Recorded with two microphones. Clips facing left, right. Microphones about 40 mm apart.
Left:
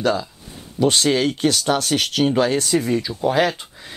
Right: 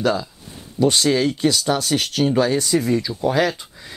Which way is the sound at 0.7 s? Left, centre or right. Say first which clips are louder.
Even; left.